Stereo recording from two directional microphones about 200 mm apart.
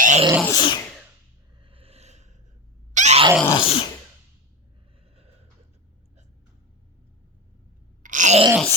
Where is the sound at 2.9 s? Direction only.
35° right (ahead or behind).